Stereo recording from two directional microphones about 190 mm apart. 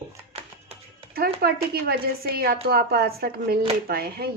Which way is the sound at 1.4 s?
55° right (ahead or behind).